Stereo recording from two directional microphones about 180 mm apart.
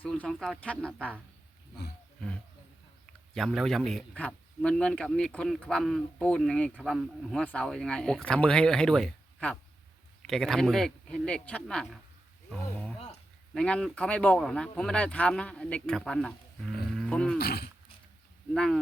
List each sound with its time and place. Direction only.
0.0 s a man's voice: 5° left (ahead or behind)
2.2 s a man's voice: 5° left (ahead or behind)
12.5 s a sound: 5° left (ahead or behind)
13.5 s a man's voice: 5° left (ahead or behind)
17.3 s speech: 60° left (ahead or behind)
18.5 s a man's voice: 5° left (ahead or behind)